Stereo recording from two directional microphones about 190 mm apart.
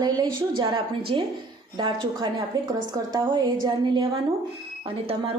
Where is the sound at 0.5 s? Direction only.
25° right (ahead or behind).